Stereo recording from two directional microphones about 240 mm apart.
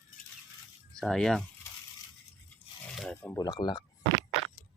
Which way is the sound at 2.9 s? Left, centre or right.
Centre.